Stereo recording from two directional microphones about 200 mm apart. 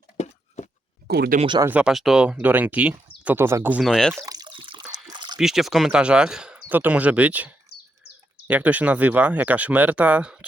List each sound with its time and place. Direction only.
0.2 s a sound: 35° left (ahead or behind)
1.0 s speech: 50° right (ahead or behind)
1.4 s speech: 25° right (ahead or behind)
1.6 s speech: 5° right (ahead or behind)
4.3 s water: 20° right (ahead or behind)
5.4 s speech: centre (ahead or behind)